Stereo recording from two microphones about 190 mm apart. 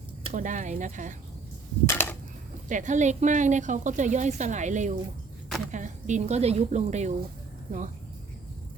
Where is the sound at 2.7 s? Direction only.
40° right (ahead or behind).